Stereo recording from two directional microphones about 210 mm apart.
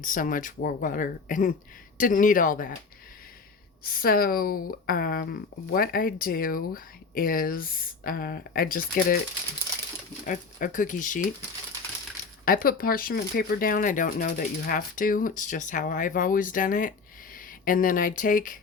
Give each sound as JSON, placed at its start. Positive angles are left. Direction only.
{"t": 0.0, "sound": "speech", "side_deg": 40}
{"t": 3.8, "sound": "speech", "side_deg": 45}
{"t": 10.2, "sound": "speech", "side_deg": 40}
{"t": 12.5, "sound": "speech", "side_deg": 40}